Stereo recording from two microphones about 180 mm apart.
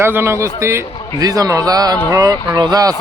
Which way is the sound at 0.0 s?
15° right (ahead or behind).